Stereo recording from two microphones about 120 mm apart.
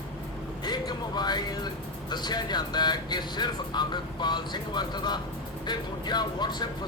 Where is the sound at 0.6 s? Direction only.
35° left (ahead or behind).